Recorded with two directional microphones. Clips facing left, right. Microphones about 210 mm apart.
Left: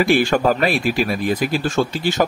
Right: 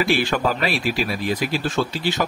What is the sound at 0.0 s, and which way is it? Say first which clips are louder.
Speech: left 5 dB; 50° left (ahead or behind).